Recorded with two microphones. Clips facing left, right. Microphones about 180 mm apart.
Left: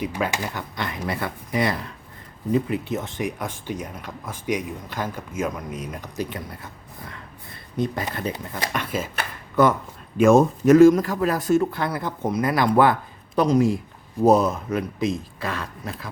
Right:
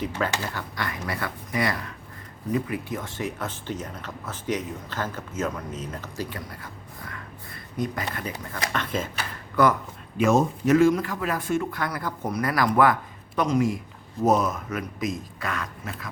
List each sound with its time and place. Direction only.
0.0 s speech: 15° left (ahead or behind)
7.8 s speech: 30° left (ahead or behind)
8.7 s speech: 10° left (ahead or behind)
10.2 s speech: 50° left (ahead or behind); by 16.0 s 30° left (ahead or behind)